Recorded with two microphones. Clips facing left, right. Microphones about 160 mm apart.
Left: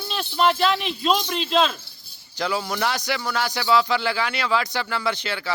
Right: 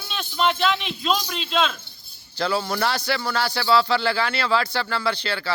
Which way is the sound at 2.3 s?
15° left (ahead or behind).